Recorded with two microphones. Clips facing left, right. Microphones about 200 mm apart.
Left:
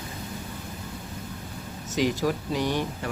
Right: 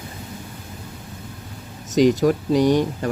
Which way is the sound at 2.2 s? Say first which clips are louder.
Right 9 dB; 45° right (ahead or behind).